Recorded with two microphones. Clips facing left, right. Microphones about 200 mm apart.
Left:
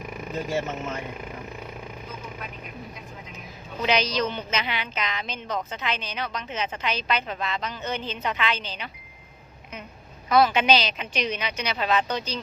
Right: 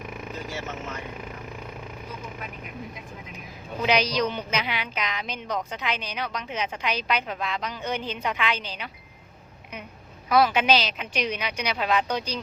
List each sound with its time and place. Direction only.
3.8 s a woman's voice: 10° right (ahead or behind)
10.2 s a woman's voice: 5° right (ahead or behind)